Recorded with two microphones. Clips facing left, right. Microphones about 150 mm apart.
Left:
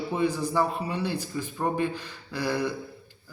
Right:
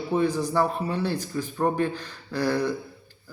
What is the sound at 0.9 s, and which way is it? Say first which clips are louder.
Speech: right 2 dB; 10° left (ahead or behind).